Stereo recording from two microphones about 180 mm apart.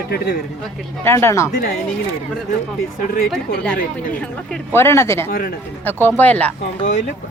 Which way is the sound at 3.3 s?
5° left (ahead or behind).